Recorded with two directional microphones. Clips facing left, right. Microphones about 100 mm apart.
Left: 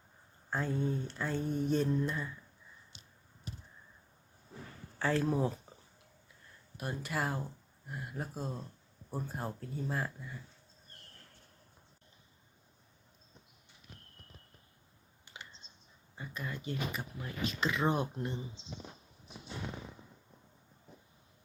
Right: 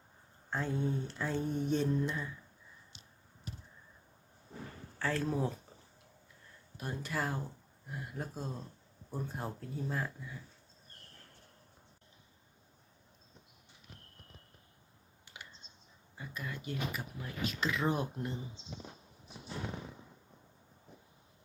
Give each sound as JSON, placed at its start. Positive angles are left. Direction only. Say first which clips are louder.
{"t": 0.5, "sound": "speech", "louder": "left 1 dB", "side_deg": 0}
{"t": 4.9, "sound": "speech", "louder": "left 3 dB", "side_deg": 15}
{"t": 5.2, "sound": "speech", "louder": "left 2 dB", "side_deg": 5}
{"t": 6.7, "sound": "speech", "louder": "left 1 dB", "side_deg": 5}
{"t": 16.1, "sound": "speech", "louder": "left 1 dB", "side_deg": 0}